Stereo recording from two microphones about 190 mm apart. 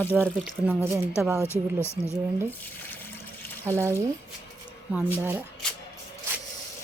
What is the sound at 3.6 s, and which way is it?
Speech, 15° right (ahead or behind).